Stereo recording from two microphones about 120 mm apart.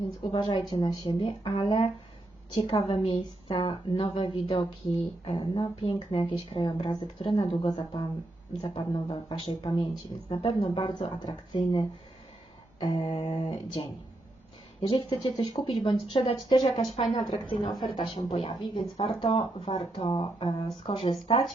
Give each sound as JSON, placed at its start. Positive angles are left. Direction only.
{"t": 0.2, "sound": "speech", "side_deg": 40}
{"t": 1.2, "sound": "a woman's voice", "side_deg": 45}
{"t": 11.5, "sound": "a woman's voice", "side_deg": 50}
{"t": 16.8, "sound": "speech", "side_deg": 0}
{"t": 17.3, "sound": "a woman's voice", "side_deg": 40}
{"t": 18.7, "sound": "speech", "side_deg": 40}
{"t": 19.0, "sound": "a woman's voice", "side_deg": 55}
{"t": 20.7, "sound": "a woman's voice", "side_deg": 45}